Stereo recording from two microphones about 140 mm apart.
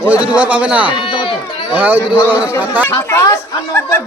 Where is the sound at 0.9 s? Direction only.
35° left (ahead or behind).